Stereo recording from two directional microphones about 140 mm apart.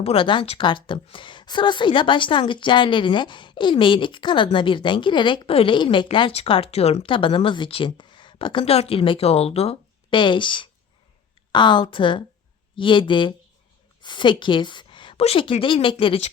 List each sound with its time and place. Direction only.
0.0 s a woman's voice: 40° left (ahead or behind)